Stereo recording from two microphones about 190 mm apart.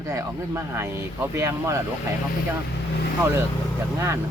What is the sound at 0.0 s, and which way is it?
Speech, 15° right (ahead or behind).